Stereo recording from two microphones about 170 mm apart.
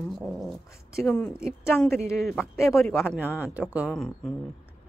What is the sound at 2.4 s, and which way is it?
Speech, 15° left (ahead or behind).